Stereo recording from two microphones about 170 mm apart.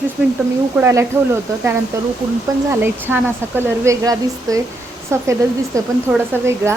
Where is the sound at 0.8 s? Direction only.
15° right (ahead or behind).